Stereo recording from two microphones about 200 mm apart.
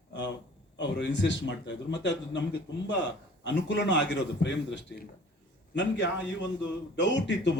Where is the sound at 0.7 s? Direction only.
65° left (ahead or behind).